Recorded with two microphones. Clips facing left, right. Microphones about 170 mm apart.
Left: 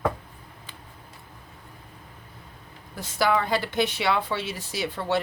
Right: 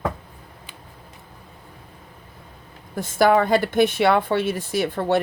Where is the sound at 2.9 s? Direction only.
50° right (ahead or behind).